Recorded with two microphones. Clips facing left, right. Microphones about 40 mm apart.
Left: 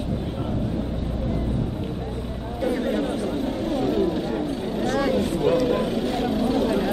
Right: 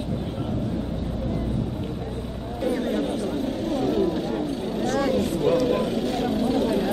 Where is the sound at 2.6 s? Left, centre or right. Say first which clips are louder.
Left 1 dB; centre.